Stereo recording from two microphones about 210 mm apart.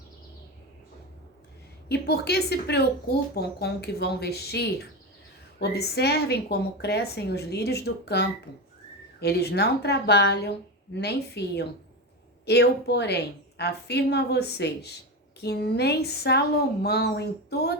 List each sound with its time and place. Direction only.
1.9 s speech: 50° left (ahead or behind)